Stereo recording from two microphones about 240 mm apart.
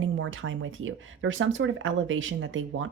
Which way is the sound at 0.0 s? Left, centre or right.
Right.